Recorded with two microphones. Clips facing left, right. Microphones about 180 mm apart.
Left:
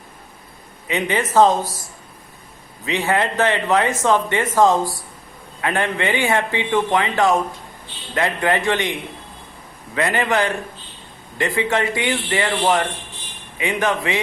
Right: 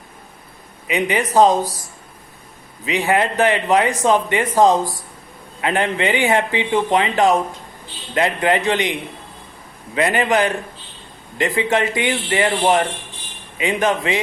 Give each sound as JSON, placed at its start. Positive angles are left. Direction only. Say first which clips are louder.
{"t": 0.9, "sound": "a man's voice", "louder": "right 2 dB", "side_deg": -15}
{"t": 2.8, "sound": "a man's voice", "louder": "right 2 dB", "side_deg": -15}